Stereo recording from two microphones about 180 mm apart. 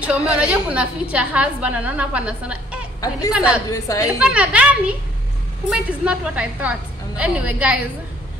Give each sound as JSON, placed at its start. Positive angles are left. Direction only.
{"t": 0.0, "sound": "a woman's voice", "side_deg": -5}
{"t": 3.0, "sound": "speech", "side_deg": 20}
{"t": 3.3, "sound": "a woman's voice", "side_deg": -5}
{"t": 3.7, "sound": "a woman's voice", "side_deg": 15}
{"t": 4.2, "sound": "a woman's voice", "side_deg": -5}